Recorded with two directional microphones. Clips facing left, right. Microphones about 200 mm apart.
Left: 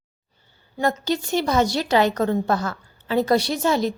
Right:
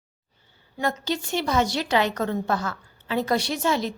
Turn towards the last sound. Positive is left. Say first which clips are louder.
# left 4 dB
turn(degrees=40)  # may be behind; listen again after turning